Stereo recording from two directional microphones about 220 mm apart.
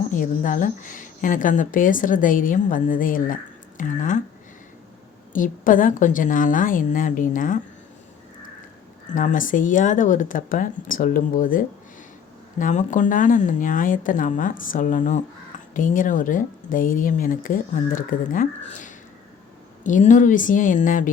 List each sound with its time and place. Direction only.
0.1 s speech: 35° left (ahead or behind)
5.3 s speech: 35° left (ahead or behind)
9.1 s speech: 35° left (ahead or behind)